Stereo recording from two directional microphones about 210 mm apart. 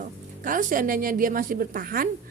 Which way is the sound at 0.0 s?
40° right (ahead or behind).